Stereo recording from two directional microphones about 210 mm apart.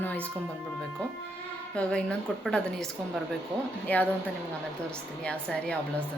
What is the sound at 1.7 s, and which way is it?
A woman's voice, 5° left (ahead or behind).